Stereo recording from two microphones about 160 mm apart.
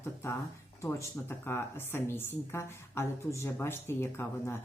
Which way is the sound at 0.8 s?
15° left (ahead or behind).